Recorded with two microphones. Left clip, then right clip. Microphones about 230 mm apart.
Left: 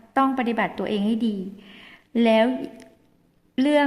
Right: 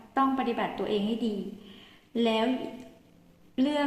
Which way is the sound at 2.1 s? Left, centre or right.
Left.